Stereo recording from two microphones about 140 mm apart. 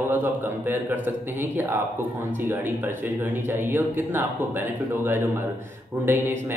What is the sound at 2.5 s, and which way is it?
A man's voice, 15° right (ahead or behind).